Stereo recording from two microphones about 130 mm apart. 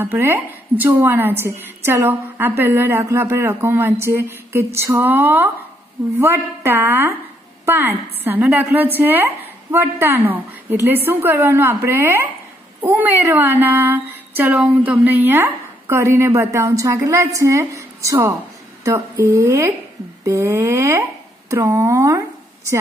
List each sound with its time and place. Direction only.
0.0 s speech: 15° right (ahead or behind)